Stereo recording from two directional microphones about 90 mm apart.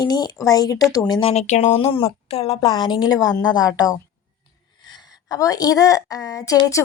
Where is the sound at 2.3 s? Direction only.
90° left.